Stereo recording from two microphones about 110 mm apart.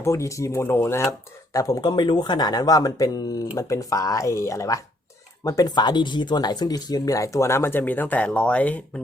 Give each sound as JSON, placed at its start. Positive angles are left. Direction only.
{"t": 0.0, "sound": "speech", "side_deg": 25}